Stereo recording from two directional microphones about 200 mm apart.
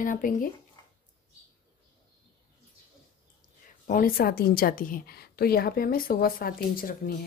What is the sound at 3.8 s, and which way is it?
Speech, 45° left (ahead or behind).